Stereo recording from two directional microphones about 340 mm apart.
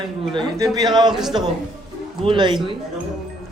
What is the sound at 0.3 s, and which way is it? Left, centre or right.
Speech, centre.